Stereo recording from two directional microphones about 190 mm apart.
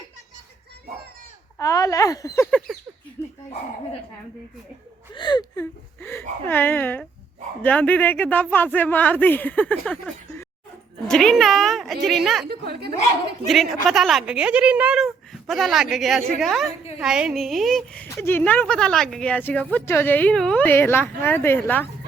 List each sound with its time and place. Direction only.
1.5 s a sound: 15° left (ahead or behind)
5.1 s speech: 25° left (ahead or behind)
6.0 s a woman's voice: 10° left (ahead or behind)
12.5 s a woman's voice: 55° right (ahead or behind)
13.5 s a woman's voice: centre (ahead or behind)